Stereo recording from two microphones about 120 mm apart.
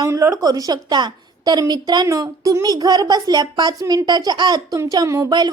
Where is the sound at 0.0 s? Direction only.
25° right (ahead or behind).